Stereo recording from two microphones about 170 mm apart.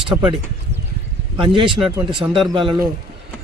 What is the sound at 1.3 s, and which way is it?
Speech, 30° right (ahead or behind).